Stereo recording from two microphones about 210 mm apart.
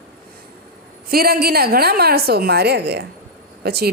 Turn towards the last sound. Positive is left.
turn(degrees=-50)  # may be behind; listen again after turning